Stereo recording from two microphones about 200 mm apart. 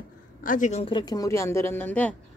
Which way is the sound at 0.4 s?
40° left (ahead or behind).